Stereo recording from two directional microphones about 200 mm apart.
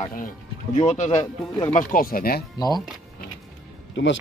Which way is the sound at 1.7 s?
45° left (ahead or behind).